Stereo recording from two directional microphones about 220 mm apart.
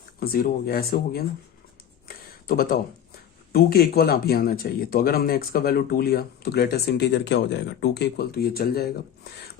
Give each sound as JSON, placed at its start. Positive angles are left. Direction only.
{"t": 0.2, "sound": "speech", "side_deg": 40}
{"t": 2.0, "sound": "a sound", "side_deg": 45}
{"t": 3.5, "sound": "speech", "side_deg": 45}